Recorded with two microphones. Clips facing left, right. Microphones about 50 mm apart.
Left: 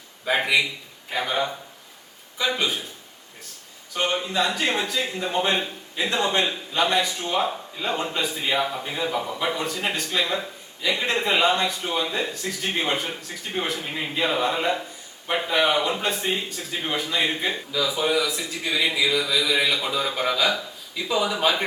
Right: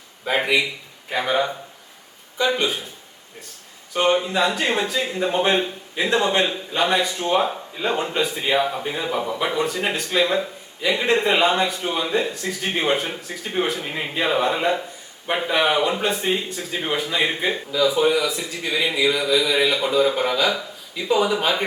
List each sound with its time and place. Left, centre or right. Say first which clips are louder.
0.3 s speech: right 1 dB; centre
2.4 s speech: right 4 dB; centre
3.9 s speech: right 5 dB; centre
5.2 s speech: right 5 dB; right